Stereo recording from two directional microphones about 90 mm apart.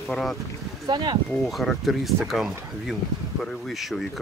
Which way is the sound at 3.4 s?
Centre (ahead or behind).